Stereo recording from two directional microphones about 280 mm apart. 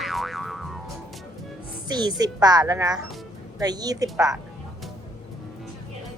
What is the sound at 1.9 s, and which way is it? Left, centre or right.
A woman's voice, centre.